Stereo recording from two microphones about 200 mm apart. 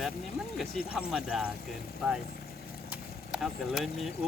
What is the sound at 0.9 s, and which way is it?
Speech, 5° right (ahead or behind).